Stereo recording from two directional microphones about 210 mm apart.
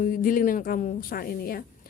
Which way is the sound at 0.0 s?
40° left (ahead or behind).